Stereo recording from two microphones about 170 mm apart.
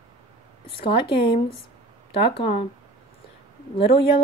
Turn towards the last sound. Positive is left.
turn(degrees=35)  # may be behind; listen again after turning